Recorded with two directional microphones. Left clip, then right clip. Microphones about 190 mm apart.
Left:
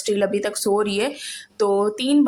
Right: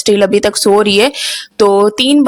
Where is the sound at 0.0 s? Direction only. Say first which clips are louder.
Right 11 dB; 50° right (ahead or behind).